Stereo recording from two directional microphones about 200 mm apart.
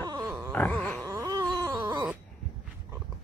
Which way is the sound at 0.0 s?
20° right (ahead or behind).